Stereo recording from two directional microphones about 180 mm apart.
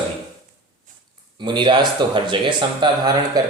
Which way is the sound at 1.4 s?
25° right (ahead or behind).